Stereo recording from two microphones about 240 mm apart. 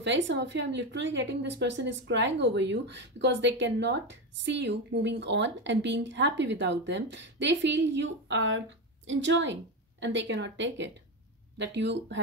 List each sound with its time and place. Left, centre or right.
0.0 s speech: right